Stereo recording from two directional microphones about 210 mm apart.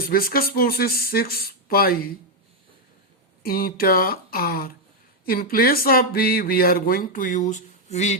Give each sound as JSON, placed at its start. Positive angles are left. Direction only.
{"t": 0.0, "sound": "speech", "side_deg": 45}
{"t": 3.4, "sound": "speech", "side_deg": 45}